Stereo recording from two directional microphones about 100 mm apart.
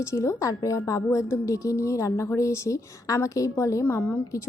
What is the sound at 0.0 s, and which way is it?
A woman's voice, 30° left (ahead or behind).